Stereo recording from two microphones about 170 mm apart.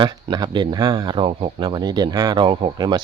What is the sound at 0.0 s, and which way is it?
Speech, 25° right (ahead or behind).